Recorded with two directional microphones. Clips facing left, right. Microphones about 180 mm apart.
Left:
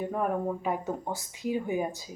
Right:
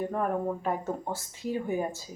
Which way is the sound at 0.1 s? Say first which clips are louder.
Even; 5° left (ahead or behind).